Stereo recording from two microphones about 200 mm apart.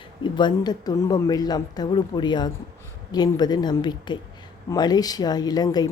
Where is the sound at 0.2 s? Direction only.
20° left (ahead or behind).